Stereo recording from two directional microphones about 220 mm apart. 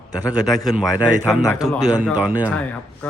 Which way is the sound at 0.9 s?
15° left (ahead or behind).